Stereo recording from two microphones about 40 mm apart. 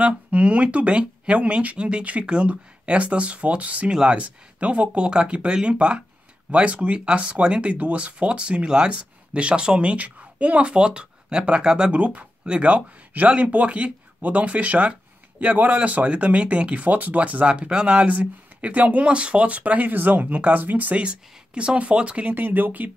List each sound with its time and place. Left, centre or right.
0.0 s speech: right
3.9 s speech: right
4.2 s speech: right
9.9 s speech: right
11.9 s speech: right
21.0 s speech: right
22.3 s speech: right